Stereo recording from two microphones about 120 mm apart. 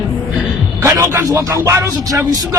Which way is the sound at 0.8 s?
25° right (ahead or behind).